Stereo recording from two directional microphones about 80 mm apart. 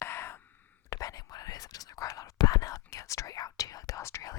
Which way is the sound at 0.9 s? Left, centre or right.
Left.